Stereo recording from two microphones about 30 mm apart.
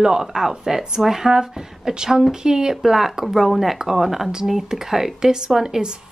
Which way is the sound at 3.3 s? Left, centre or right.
Centre.